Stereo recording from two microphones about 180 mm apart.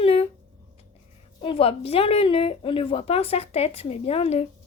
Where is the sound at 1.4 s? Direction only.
30° left (ahead or behind).